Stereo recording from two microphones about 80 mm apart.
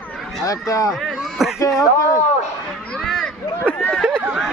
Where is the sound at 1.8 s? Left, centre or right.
Left.